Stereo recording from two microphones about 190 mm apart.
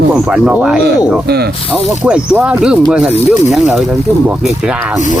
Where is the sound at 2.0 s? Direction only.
5° right (ahead or behind).